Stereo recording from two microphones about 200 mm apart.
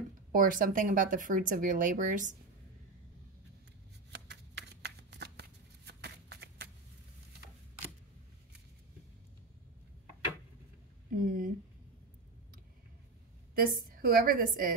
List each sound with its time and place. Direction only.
0.3 s speech: 45° right (ahead or behind)
4.3 s shuffling cards: 60° right (ahead or behind)
11.1 s a sound: 45° right (ahead or behind)
13.6 s speech: 45° right (ahead or behind)